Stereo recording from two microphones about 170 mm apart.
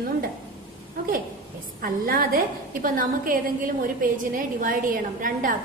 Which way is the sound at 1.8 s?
55° right (ahead or behind).